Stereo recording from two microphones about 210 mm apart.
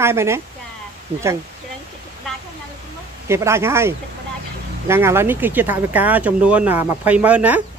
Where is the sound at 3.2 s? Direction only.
15° right (ahead or behind).